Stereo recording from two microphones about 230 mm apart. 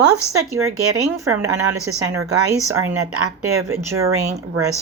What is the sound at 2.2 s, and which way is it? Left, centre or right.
Speech, right.